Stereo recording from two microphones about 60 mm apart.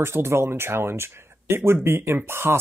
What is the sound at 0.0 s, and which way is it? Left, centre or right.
Speech, right.